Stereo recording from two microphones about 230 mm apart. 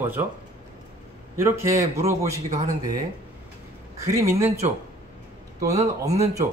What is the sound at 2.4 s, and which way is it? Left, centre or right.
Speech, right.